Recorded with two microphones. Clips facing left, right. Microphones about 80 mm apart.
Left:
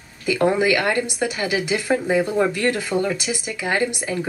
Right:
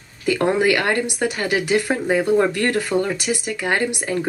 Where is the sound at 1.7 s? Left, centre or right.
Centre.